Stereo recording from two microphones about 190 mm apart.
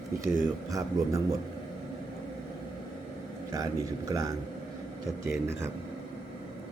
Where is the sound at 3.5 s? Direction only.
20° right (ahead or behind).